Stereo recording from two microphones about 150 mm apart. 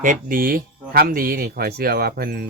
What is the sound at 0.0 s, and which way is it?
Speech, 65° right (ahead or behind).